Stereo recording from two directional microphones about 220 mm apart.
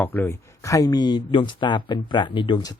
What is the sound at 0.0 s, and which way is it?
Speech, 10° left (ahead or behind).